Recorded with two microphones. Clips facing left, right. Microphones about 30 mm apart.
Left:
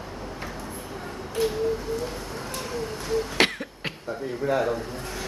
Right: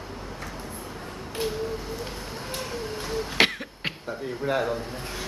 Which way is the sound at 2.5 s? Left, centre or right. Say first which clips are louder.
Left 1 dB; centre.